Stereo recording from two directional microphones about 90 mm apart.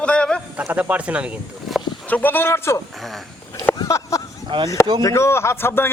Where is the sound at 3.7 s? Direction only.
40° left (ahead or behind).